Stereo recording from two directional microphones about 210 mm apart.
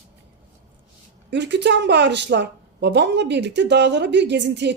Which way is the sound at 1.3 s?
55° right (ahead or behind).